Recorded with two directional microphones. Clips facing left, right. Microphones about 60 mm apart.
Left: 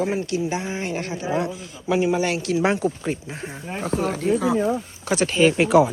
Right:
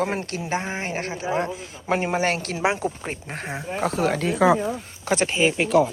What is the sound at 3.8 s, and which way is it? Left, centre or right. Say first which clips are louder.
Speech: even; right.